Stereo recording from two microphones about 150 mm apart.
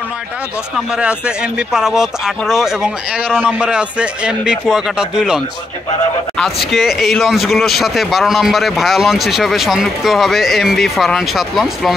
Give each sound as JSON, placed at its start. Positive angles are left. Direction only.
{"t": 0.9, "sound": "speech", "side_deg": -5}
{"t": 6.7, "sound": "speech", "side_deg": 0}